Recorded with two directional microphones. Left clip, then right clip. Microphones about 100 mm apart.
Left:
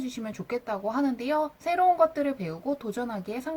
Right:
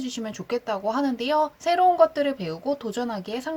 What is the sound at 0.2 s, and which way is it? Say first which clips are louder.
Speech: right 5 dB; 15° right (ahead or behind).